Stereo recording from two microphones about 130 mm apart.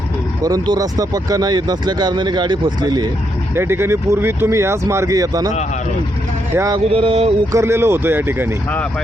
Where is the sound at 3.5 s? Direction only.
20° right (ahead or behind).